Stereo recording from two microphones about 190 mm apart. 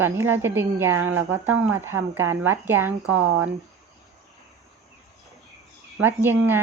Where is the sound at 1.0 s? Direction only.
90° right.